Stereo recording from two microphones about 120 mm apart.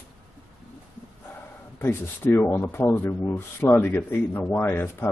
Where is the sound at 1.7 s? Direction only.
20° left (ahead or behind).